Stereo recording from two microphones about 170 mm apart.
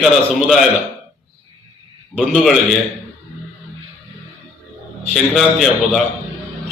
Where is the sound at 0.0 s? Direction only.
Centre (ahead or behind).